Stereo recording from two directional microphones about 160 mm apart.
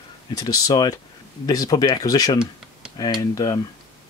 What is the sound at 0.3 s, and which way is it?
Speech, 25° left (ahead or behind).